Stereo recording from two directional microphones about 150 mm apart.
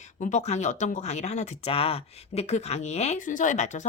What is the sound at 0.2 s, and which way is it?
Speech, 55° left (ahead or behind).